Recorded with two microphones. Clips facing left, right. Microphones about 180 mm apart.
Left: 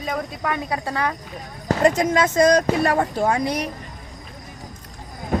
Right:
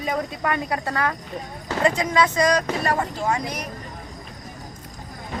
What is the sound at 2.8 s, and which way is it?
Speech, 60° left (ahead or behind).